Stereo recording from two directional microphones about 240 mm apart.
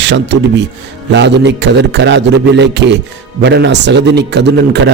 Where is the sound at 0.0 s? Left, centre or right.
Right.